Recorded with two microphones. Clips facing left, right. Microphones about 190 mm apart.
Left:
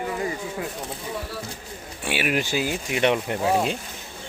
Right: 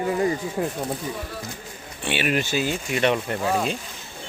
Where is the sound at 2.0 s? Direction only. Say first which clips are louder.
Right 1 dB; 10° left (ahead or behind).